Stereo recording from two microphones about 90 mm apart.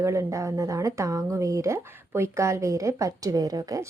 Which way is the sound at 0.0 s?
35° right (ahead or behind).